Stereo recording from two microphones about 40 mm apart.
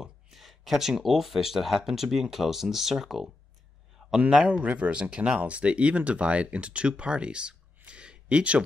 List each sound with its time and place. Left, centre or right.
0.0 s speech: centre
4.0 s a sound: centre
4.5 s speech: right